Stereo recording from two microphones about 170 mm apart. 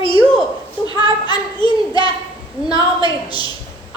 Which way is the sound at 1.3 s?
25° left (ahead or behind).